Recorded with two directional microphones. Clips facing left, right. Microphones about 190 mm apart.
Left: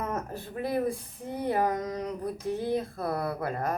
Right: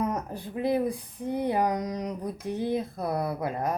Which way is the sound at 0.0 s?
15° right (ahead or behind).